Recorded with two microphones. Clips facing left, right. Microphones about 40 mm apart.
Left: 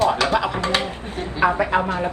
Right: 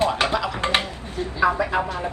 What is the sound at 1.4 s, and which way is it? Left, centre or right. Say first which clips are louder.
Speech: left 2 dB; left.